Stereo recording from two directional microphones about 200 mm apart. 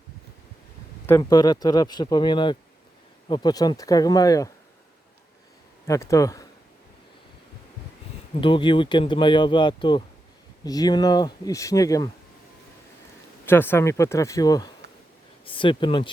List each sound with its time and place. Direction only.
1.2 s speech: 20° left (ahead or behind)
5.9 s speech: 15° left (ahead or behind)
8.4 s speech: 25° left (ahead or behind)
13.4 s speech: 10° left (ahead or behind)